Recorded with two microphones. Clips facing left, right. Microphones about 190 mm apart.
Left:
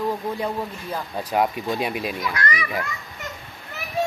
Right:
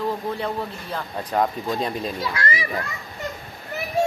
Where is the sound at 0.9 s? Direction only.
10° left (ahead or behind).